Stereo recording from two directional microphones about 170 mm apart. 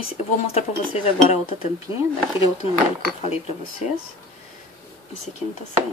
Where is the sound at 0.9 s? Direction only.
40° left (ahead or behind).